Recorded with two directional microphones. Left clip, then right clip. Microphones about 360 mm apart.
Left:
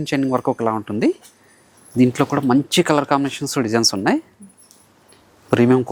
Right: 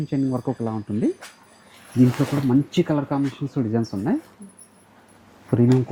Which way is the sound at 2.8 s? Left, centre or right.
Centre.